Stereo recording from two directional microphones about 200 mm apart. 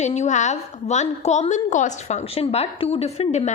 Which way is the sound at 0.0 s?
35° left (ahead or behind).